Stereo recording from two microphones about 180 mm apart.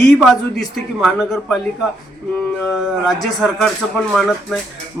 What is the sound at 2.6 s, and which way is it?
Speech, centre (ahead or behind).